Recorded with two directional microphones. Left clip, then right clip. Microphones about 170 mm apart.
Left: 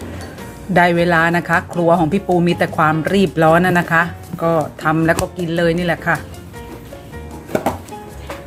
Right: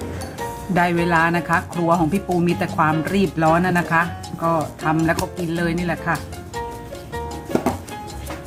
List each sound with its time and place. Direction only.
0.7 s speech: 25° left (ahead or behind)